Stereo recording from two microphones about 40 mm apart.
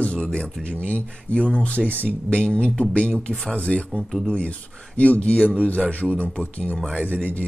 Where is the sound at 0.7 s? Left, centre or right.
Left.